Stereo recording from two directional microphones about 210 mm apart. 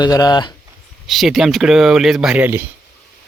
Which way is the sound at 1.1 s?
Centre (ahead or behind).